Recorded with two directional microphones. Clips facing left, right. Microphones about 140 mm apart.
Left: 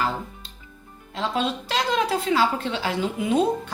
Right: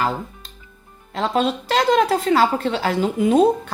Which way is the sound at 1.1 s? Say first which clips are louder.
Right 5 dB; 50° right (ahead or behind).